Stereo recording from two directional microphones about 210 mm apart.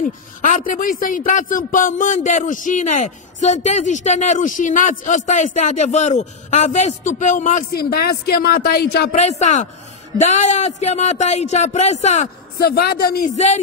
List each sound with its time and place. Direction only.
0.0 s a man's voice: 40° left (ahead or behind)
9.2 s a man's voice: 35° left (ahead or behind)
12.5 s a man's voice: 45° left (ahead or behind)